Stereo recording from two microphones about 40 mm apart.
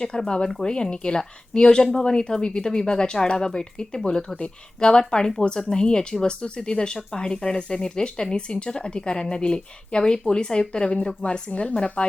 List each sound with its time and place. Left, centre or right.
0.0 s speech: centre